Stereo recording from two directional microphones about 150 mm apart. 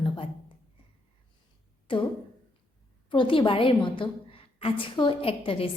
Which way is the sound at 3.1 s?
35° left (ahead or behind).